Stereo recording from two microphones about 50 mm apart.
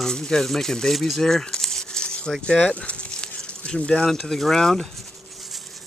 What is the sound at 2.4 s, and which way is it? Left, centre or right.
Speech, left.